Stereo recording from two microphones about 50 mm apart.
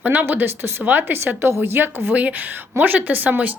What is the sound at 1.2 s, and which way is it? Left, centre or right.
A woman's voice, right.